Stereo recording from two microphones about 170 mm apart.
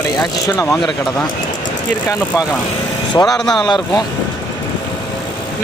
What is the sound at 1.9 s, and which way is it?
Speech, 20° left (ahead or behind).